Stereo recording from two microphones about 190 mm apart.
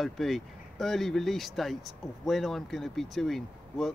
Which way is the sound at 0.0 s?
Centre (ahead or behind).